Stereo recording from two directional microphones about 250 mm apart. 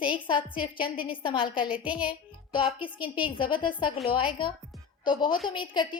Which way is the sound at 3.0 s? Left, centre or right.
Left.